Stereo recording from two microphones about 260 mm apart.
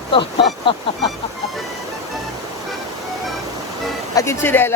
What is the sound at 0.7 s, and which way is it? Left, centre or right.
Speech, centre.